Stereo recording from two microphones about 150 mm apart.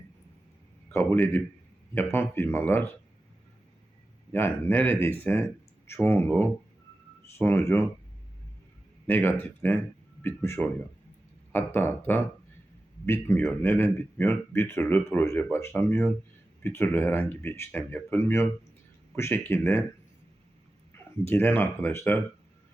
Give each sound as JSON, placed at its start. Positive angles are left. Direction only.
{"t": 0.9, "sound": "speech", "side_deg": 15}
{"t": 4.3, "sound": "speech", "side_deg": 15}
{"t": 9.0, "sound": "speech", "side_deg": 15}
{"t": 20.9, "sound": "speech", "side_deg": 15}